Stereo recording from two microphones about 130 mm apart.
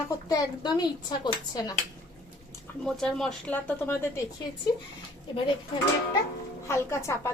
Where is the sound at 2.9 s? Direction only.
5° left (ahead or behind).